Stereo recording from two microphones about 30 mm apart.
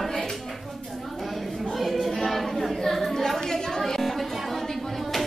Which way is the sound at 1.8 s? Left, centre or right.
Centre.